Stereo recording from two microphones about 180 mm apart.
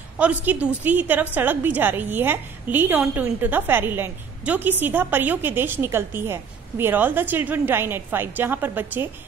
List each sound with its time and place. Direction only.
0.2 s a woman's voice: 10° right (ahead or behind)